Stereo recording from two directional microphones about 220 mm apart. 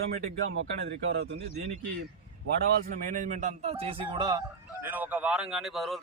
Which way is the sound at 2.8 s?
35° right (ahead or behind).